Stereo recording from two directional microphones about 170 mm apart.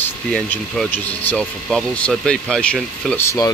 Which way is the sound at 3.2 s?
15° left (ahead or behind).